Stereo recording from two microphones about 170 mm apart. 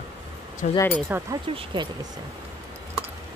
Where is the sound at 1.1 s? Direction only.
10° right (ahead or behind).